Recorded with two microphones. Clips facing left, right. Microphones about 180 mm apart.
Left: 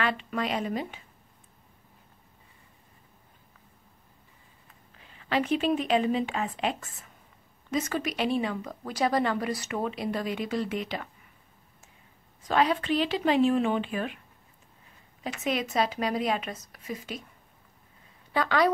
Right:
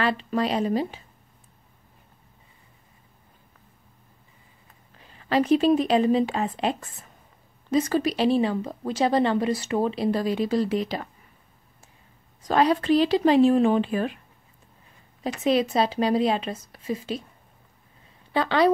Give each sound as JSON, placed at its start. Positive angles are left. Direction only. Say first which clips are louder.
{"t": 0.0, "sound": "speech", "louder": "right 5 dB", "side_deg": -35}
{"t": 5.1, "sound": "speech", "louder": "right 6 dB", "side_deg": -40}
{"t": 12.4, "sound": "speech", "louder": "right 4 dB", "side_deg": -40}
{"t": 15.2, "sound": "speech", "louder": "right 8 dB", "side_deg": -35}
{"t": 18.3, "sound": "speech", "louder": "right 4 dB", "side_deg": -30}